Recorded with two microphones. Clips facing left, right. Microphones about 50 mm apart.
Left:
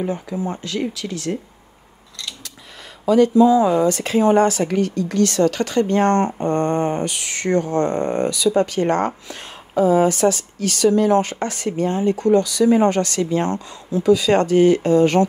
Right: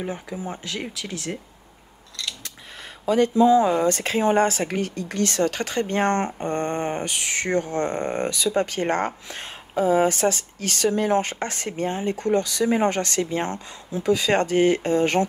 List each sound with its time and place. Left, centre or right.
0.5 s speech: centre
3.1 s speech: right
6.2 s a sound: left
6.8 s speech: right
7.5 s a sound: left
7.9 s speech: right